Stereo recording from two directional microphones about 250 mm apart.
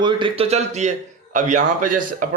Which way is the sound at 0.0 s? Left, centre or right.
Centre.